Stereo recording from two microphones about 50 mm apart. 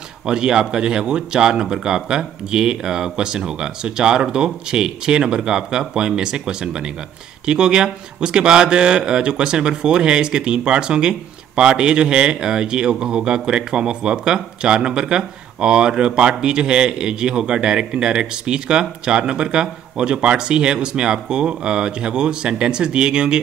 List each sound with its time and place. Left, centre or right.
0.3 s a man's voice: centre